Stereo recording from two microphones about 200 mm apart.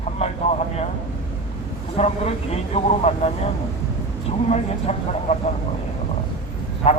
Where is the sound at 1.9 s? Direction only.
30° left (ahead or behind).